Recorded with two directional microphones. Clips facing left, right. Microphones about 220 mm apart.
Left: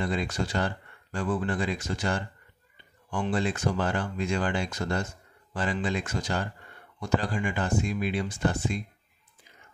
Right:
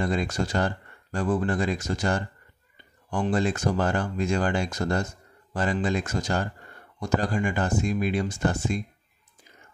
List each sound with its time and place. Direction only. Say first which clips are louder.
0.0 s speech: right 3 dB; 45° right (ahead or behind)